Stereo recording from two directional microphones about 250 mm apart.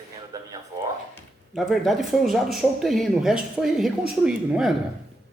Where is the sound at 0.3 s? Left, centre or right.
Centre.